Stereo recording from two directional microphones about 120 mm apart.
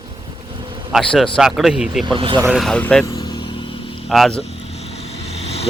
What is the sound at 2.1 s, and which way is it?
Speech, 45° right (ahead or behind).